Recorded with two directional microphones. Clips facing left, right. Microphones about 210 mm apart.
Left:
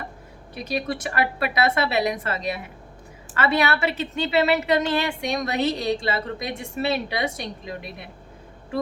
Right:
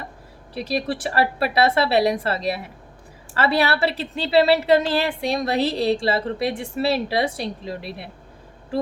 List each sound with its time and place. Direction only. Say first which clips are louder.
0.5 s a woman's voice: right 3 dB; 35° right (ahead or behind)